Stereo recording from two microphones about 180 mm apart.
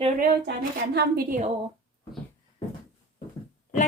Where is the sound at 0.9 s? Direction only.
60° right (ahead or behind).